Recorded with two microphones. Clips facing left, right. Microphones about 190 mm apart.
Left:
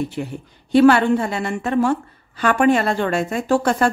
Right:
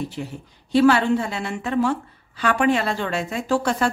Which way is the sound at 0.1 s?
55° left (ahead or behind).